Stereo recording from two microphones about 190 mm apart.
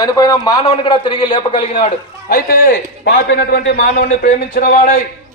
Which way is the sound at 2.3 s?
50° left (ahead or behind).